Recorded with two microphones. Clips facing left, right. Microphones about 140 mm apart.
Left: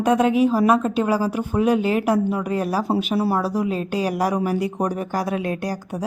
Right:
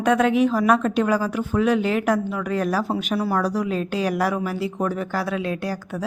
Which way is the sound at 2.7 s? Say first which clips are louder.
Even; 10° left (ahead or behind).